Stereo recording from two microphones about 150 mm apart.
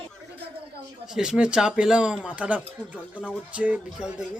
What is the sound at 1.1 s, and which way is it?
Speech, 5° right (ahead or behind).